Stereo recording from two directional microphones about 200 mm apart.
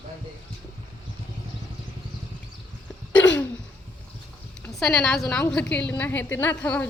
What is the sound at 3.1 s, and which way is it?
Throat clearing, 5° left (ahead or behind).